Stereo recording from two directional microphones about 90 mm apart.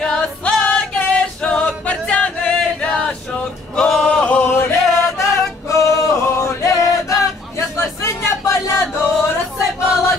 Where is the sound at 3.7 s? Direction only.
5° left (ahead or behind).